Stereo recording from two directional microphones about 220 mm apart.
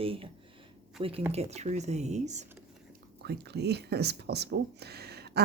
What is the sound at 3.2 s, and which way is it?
Speech, 50° right (ahead or behind).